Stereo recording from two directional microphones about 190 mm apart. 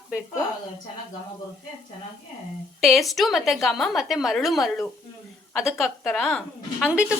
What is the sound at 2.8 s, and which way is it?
A woman's voice, centre (ahead or behind).